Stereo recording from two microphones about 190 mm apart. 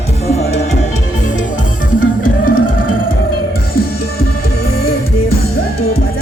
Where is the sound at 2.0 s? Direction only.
45° left (ahead or behind).